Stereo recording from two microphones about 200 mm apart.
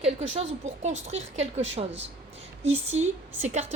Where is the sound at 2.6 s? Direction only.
35° right (ahead or behind).